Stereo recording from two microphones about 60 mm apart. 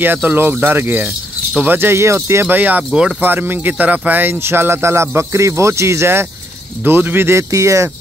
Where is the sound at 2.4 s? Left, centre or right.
Right.